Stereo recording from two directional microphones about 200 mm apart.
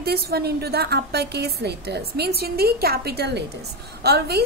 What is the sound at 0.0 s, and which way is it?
A woman's voice, 50° right (ahead or behind).